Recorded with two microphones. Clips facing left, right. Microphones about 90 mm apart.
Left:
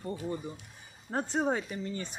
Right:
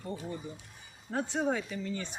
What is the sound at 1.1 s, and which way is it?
Speech, 35° left (ahead or behind).